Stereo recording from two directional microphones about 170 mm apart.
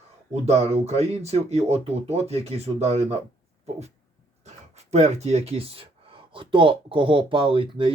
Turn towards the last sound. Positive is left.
turn(degrees=-30)  # may be behind; listen again after turning